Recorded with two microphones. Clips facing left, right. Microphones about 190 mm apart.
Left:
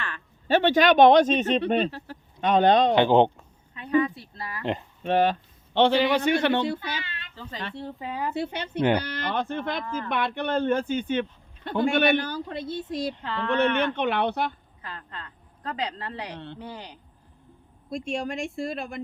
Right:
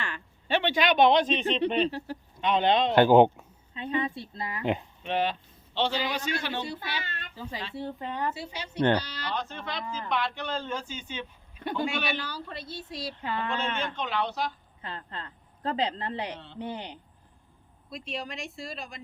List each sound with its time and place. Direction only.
0.4 s speech: 40° left (ahead or behind)
2.9 s speech: 5° right (ahead or behind)
3.8 s speech: 25° right (ahead or behind)
5.0 s a man's voice: 45° left (ahead or behind)
7.0 s a sound: 45° right (ahead or behind)
7.3 s speech: 10° right (ahead or behind)
7.8 s speech: centre (ahead or behind)
8.3 s a man's voice: 55° left (ahead or behind)
8.8 s speech: 10° left (ahead or behind)
9.0 s a man's voice: 55° left (ahead or behind)
13.2 s speech: 10° right (ahead or behind)
13.5 s a man's voice: 65° left (ahead or behind)
14.8 s a woman's voice: 25° right (ahead or behind)
17.8 s speech: 50° left (ahead or behind)